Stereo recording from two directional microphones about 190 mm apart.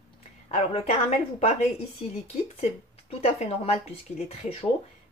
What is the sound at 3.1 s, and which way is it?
Speech, 30° left (ahead or behind).